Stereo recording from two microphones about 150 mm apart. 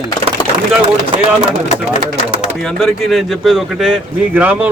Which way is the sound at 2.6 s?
Centre (ahead or behind).